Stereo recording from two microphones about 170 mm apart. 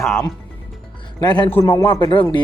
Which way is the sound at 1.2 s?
25° left (ahead or behind).